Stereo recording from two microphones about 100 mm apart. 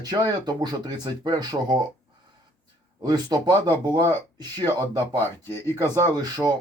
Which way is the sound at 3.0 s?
40° right (ahead or behind).